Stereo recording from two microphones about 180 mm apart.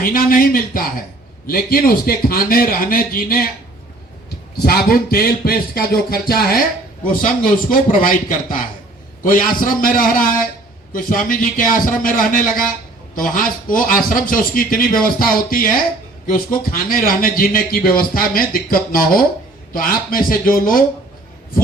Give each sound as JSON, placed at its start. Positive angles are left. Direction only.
{"t": 0.0, "sound": "a man's voice", "side_deg": 55}
{"t": 4.6, "sound": "a man's voice", "side_deg": 55}